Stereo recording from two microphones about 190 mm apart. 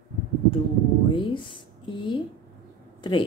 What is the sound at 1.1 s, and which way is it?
Speech, 25° left (ahead or behind).